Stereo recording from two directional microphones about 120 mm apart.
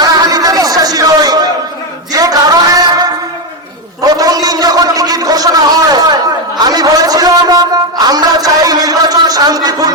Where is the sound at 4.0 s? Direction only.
30° right (ahead or behind).